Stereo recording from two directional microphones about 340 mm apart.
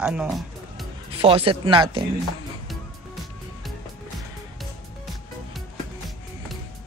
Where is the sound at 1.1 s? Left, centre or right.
Centre.